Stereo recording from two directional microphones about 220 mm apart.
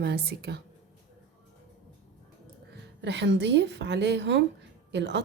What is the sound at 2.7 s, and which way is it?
A woman's voice, 50° right (ahead or behind).